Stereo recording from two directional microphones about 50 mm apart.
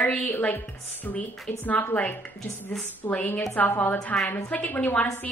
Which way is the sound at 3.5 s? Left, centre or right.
Left.